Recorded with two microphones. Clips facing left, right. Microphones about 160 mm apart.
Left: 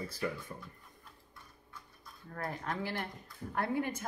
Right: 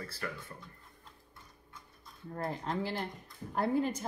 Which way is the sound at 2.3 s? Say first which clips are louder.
Right 3 dB; 25° right (ahead or behind).